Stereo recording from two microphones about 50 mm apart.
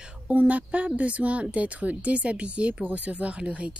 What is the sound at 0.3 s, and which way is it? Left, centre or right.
Speech, right.